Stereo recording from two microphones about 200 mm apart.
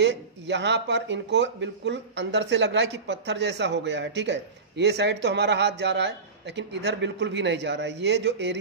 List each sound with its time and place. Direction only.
0.0 s speech: 60° right (ahead or behind)